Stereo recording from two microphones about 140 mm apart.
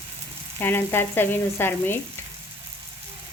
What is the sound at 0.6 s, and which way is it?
Frying, 15° left (ahead or behind).